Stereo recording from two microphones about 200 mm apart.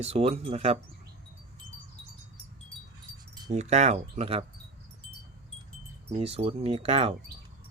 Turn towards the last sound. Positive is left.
turn(degrees=-30)  # may be behind; listen again after turning